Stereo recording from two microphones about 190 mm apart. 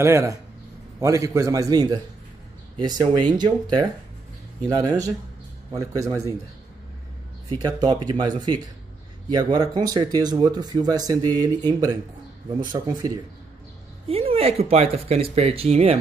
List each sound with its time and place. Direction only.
0.0 s a man's voice: 15° right (ahead or behind)
7.4 s speech: 20° right (ahead or behind)
14.0 s speech: 30° right (ahead or behind)